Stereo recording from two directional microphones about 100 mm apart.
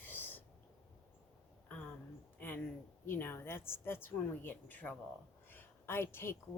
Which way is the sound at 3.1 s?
20° left (ahead or behind).